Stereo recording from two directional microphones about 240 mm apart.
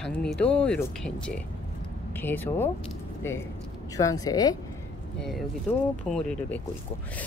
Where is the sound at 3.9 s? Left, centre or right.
Centre.